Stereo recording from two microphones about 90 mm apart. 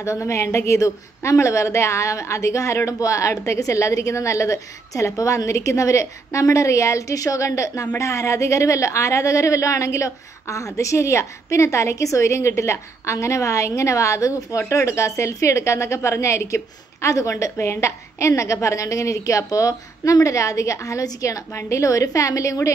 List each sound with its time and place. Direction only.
0.0 s a woman's voice: 35° left (ahead or behind)